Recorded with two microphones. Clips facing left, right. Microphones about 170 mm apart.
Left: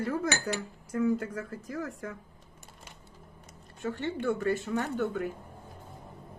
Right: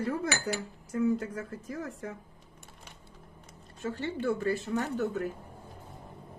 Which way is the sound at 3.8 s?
30° right (ahead or behind).